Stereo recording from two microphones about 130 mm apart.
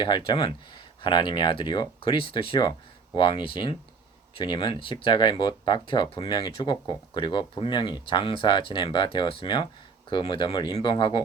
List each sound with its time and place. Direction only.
0.0 s speech: 40° left (ahead or behind)